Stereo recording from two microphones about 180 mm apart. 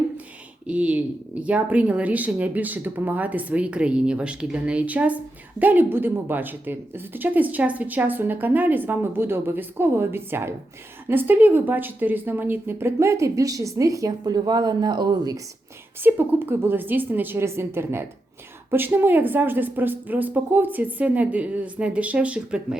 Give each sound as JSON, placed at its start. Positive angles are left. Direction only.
{"t": 0.7, "sound": "speech", "side_deg": -5}
{"t": 16.0, "sound": "speech", "side_deg": -10}